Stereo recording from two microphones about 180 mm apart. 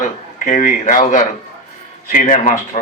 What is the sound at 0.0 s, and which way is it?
A man's voice, 40° left (ahead or behind).